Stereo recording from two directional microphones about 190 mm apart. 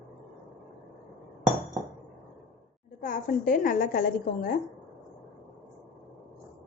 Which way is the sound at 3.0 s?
45° left (ahead or behind).